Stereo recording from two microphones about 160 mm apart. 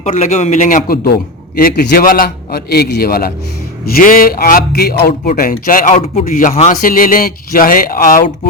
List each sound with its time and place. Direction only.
0.0 s a man's voice: 50° left (ahead or behind); by 4.9 s 75° left (ahead or behind)
5.0 s a man's voice: 60° left (ahead or behind); by 6.2 s 45° left (ahead or behind)
6.2 s a man's voice: 60° left (ahead or behind)